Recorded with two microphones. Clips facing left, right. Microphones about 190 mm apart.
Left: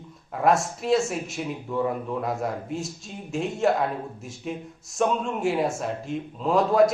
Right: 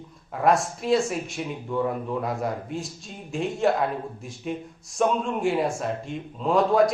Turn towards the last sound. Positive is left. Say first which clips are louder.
# even
turn(degrees=0)  # may be behind; listen again after turning